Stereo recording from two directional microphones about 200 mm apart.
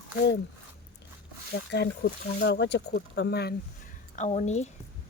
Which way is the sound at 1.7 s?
55° left (ahead or behind).